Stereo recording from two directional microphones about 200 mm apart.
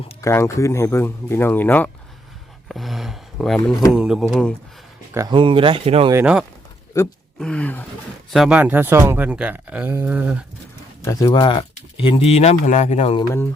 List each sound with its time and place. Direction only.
0.2 s speech: 15° left (ahead or behind)
2.6 s a sound: centre (ahead or behind)
3.9 s speech: 5° right (ahead or behind)
5.1 s speech: 20° right (ahead or behind)
6.1 s speech: 5° right (ahead or behind)
6.9 s speech: 15° left (ahead or behind)
7.3 s speech: 5° left (ahead or behind)
11.0 s speech: 15° left (ahead or behind)